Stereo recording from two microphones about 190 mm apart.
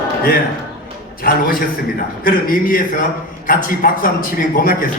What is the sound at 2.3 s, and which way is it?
A man's voice, 50° left (ahead or behind).